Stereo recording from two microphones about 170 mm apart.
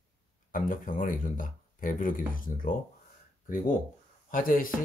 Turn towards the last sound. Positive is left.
turn(degrees=55)  # may be behind; listen again after turning